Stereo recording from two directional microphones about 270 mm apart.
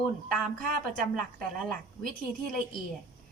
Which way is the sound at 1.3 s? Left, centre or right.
Centre.